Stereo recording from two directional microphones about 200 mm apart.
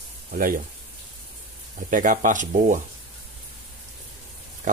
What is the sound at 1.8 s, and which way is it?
Speech, 40° right (ahead or behind).